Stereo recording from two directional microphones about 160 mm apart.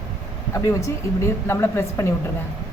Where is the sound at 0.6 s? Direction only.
20° left (ahead or behind).